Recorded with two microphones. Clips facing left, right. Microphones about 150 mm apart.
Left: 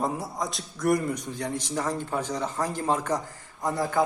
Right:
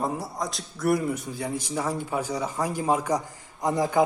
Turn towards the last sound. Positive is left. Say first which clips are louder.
# right 3 dB
turn(degrees=-15)  # may be behind; listen again after turning